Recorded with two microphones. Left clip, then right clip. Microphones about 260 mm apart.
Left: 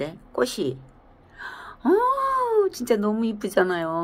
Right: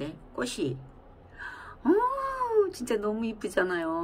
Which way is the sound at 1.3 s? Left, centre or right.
Left.